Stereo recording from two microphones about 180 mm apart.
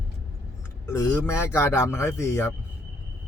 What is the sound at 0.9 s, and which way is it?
Speech, 15° left (ahead or behind).